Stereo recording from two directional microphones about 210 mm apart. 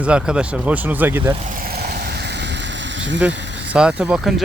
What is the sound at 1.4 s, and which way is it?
Vehicle, 40° right (ahead or behind).